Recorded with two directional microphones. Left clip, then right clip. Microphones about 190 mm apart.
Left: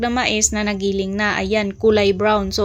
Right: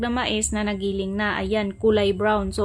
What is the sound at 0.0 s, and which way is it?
A woman's voice, 15° left (ahead or behind).